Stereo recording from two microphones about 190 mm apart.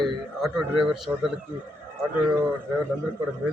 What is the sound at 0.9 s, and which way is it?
Speech, centre (ahead or behind).